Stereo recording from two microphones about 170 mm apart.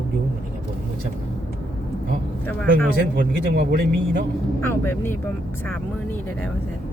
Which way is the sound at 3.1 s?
60° right (ahead or behind).